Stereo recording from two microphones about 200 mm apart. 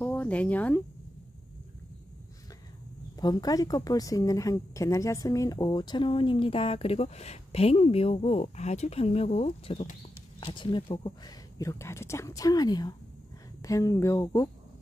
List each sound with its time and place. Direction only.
0.0 s speech: 10° left (ahead or behind)
3.2 s a woman's voice: 20° left (ahead or behind)